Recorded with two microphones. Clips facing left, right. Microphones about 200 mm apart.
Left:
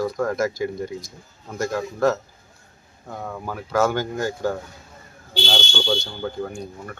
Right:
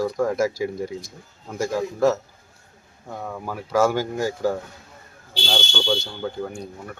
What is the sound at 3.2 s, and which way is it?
Speech, 5° right (ahead or behind).